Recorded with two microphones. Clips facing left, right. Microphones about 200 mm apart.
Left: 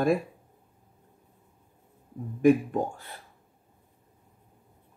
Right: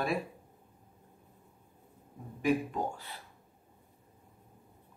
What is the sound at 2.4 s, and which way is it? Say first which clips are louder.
Speech: left 8 dB; 50° left (ahead or behind).